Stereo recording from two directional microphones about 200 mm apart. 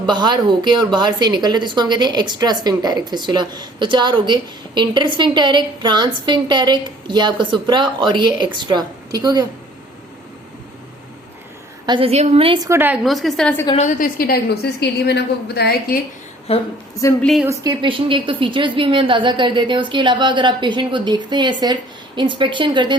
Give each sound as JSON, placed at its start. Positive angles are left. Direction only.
{"t": 0.0, "sound": "a woman's voice", "side_deg": -20}
{"t": 11.9, "sound": "a woman's voice", "side_deg": -25}
{"t": 12.6, "sound": "a woman's voice", "side_deg": -10}
{"t": 13.7, "sound": "a woman's voice", "side_deg": 40}
{"t": 16.5, "sound": "speech", "side_deg": 30}
{"t": 17.0, "sound": "a woman's voice", "side_deg": 10}
{"t": 17.4, "sound": "a woman's voice", "side_deg": -15}